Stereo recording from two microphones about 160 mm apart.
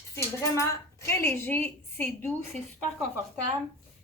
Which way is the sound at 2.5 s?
45° right (ahead or behind).